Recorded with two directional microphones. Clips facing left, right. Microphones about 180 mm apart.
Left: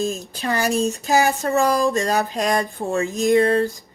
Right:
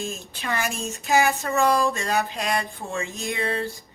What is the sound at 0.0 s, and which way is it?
Speech, 40° left (ahead or behind).